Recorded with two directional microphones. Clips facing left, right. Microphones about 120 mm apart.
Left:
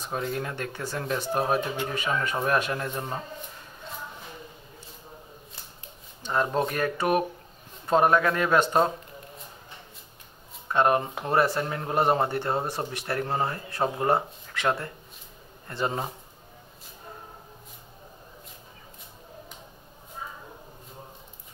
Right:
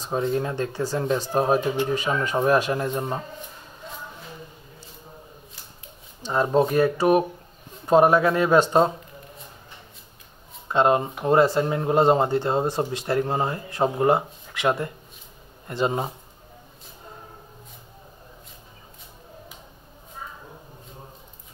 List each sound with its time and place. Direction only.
0.1 s speech: 25° right (ahead or behind)
6.3 s a man's voice: 15° right (ahead or behind)
7.0 s speech: 35° right (ahead or behind)
7.8 s a man's voice: 15° right (ahead or behind)
10.7 s speech: 20° right (ahead or behind)